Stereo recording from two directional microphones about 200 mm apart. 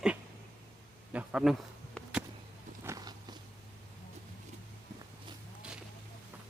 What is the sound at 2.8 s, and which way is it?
Biting, 15° right (ahead or behind).